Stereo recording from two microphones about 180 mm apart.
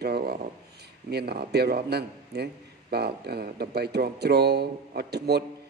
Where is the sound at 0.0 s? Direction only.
60° right (ahead or behind).